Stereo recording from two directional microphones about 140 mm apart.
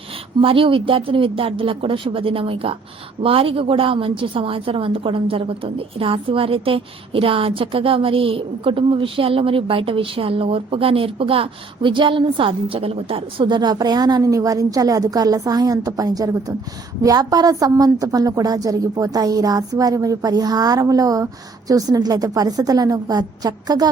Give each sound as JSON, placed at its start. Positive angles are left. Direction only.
{"t": 0.4, "sound": "a woman's voice", "side_deg": -40}